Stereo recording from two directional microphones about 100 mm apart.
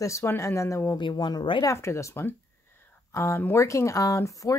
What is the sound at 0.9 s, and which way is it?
Speech, 50° left (ahead or behind).